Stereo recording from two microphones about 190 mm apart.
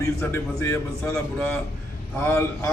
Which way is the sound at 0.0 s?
10° left (ahead or behind).